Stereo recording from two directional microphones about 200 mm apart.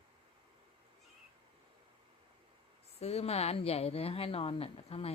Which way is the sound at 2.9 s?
30° left (ahead or behind).